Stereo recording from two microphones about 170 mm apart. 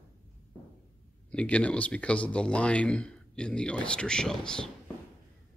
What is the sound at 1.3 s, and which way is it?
Speech, 5° left (ahead or behind).